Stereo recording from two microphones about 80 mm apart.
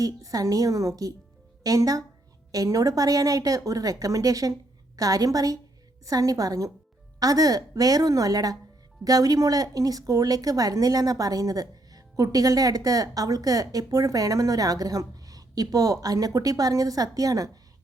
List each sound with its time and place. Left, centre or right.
0.0 s speech: right